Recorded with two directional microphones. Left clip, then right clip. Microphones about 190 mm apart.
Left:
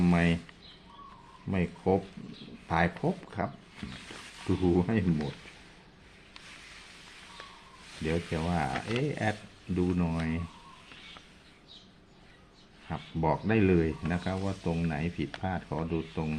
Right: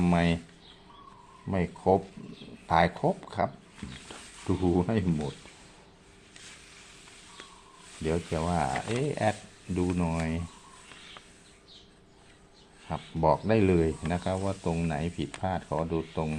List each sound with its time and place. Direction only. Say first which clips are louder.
0.0 s speech: right 1 dB; 25° right (ahead or behind)
1.5 s speech: right 4 dB; 20° right (ahead or behind)
4.5 s speech: right 1 dB; 30° right (ahead or behind)
8.0 s speech: right 2 dB; 25° right (ahead or behind)
12.9 s speech: right 5 dB; 20° right (ahead or behind)